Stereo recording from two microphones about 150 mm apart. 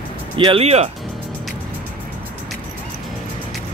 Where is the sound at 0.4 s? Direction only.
40° right (ahead or behind).